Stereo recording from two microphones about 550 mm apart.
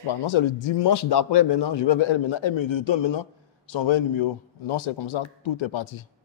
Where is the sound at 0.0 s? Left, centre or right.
Left.